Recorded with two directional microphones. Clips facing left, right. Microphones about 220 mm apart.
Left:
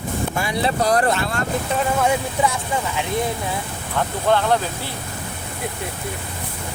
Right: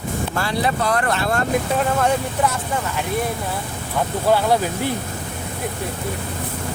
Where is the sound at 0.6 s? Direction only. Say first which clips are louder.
Left 3 dB; 35° left (ahead or behind).